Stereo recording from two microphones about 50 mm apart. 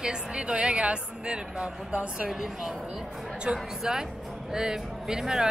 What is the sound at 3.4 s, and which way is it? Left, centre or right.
A woman's voice, centre.